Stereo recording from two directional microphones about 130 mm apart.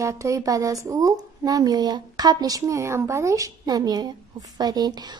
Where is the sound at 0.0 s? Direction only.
25° right (ahead or behind).